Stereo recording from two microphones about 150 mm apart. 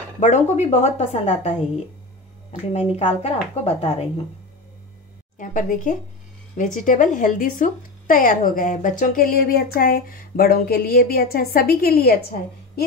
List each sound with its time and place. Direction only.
0.2 s speech: 50° left (ahead or behind)
2.7 s speech: 45° left (ahead or behind)
5.4 s a woman's voice: 60° left (ahead or behind); by 12.8 s 90° left